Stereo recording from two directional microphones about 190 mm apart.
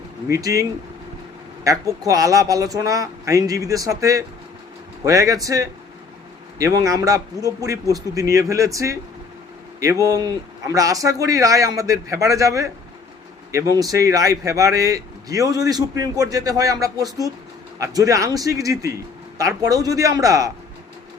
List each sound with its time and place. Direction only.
0.3 s a man's voice: 15° right (ahead or behind)